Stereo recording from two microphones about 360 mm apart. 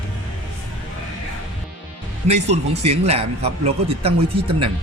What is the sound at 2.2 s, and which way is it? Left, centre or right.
Speech, centre.